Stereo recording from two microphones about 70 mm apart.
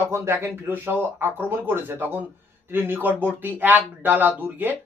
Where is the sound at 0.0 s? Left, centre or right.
Right.